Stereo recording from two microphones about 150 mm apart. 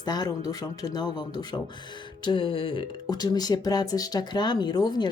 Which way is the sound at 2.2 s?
35° left (ahead or behind).